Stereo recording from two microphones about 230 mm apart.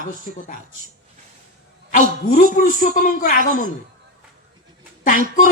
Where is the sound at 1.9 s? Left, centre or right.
Left.